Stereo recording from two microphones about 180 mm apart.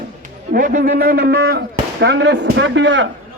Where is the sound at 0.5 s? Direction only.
50° right (ahead or behind).